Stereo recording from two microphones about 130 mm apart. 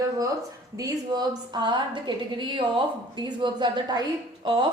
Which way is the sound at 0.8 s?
30° right (ahead or behind).